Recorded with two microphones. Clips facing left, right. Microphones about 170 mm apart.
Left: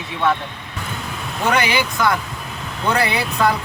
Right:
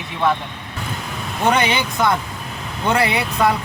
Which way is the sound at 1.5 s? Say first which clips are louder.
Even; 25° right (ahead or behind).